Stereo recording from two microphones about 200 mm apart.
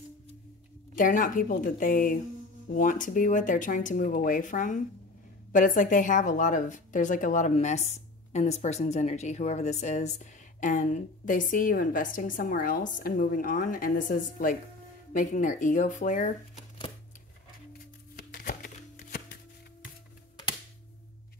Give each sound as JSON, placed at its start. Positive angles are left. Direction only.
{"t": 0.9, "sound": "a woman's voice", "side_deg": 40}
{"t": 18.3, "sound": "music", "side_deg": 45}